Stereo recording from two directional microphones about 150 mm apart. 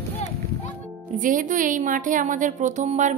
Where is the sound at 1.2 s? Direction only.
65° right (ahead or behind).